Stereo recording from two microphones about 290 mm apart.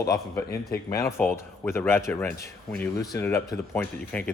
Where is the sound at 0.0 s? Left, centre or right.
Centre.